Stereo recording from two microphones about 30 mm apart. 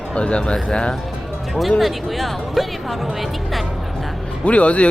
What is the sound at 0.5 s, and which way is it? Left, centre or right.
Speech, left.